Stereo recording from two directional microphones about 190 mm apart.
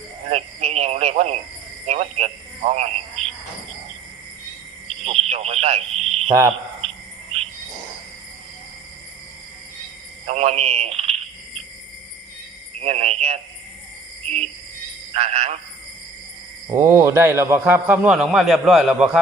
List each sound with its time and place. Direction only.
0.3 s a man's voice: 35° right (ahead or behind)
5.0 s speech: 35° right (ahead or behind)
6.8 s cricket: 30° right (ahead or behind)
10.2 s cricket: 35° right (ahead or behind)
12.8 s speech: 35° right (ahead or behind)
15.1 s speech: 35° right (ahead or behind)
16.7 s a man's voice: 15° right (ahead or behind)